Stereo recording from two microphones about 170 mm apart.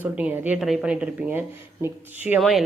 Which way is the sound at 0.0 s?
10° right (ahead or behind).